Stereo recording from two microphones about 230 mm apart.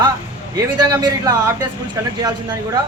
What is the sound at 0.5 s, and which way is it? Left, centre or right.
Speech, centre.